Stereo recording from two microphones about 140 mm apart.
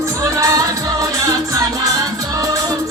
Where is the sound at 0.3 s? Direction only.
20° right (ahead or behind).